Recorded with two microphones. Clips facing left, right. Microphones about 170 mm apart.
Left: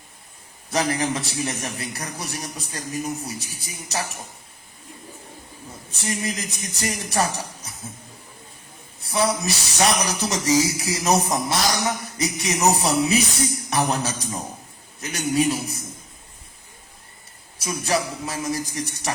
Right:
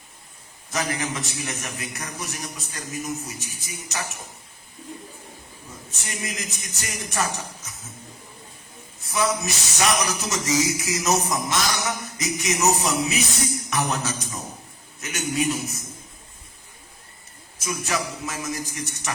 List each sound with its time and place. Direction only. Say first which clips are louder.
0.7 s speech: left 5 dB; 35° left (ahead or behind)
5.9 s speech: left 7 dB; 35° left (ahead or behind)
9.0 s speech: left 2 dB; 35° left (ahead or behind)
17.6 s speech: left 3 dB; 35° left (ahead or behind)